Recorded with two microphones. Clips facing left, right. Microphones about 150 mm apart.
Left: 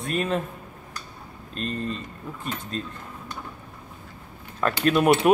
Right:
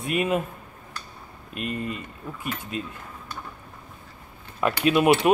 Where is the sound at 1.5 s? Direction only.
10° right (ahead or behind).